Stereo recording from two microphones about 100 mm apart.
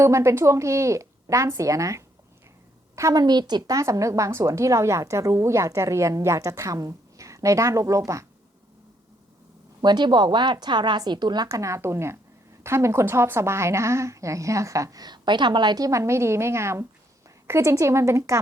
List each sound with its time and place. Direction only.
0.0 s a woman's voice: 30° right (ahead or behind)
9.8 s a woman's voice: 45° right (ahead or behind)
11.4 s a woman's voice: 30° right (ahead or behind)